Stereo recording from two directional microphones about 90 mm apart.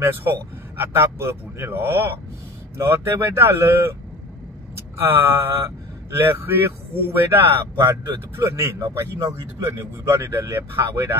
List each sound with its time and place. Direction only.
0.0 s speech: 25° right (ahead or behind)
4.9 s speech: 25° right (ahead or behind)